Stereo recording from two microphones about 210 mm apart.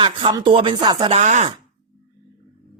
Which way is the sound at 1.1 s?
35° right (ahead or behind).